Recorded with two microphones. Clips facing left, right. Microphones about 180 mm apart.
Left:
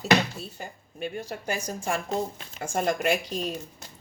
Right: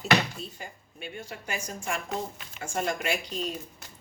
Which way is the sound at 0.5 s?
45° left (ahead or behind).